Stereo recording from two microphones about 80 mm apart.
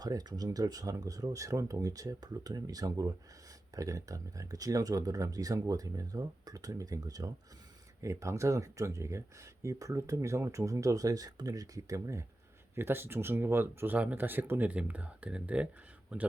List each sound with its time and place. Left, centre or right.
0.0 s speech: right
8.0 s speech: right
12.7 s speech: right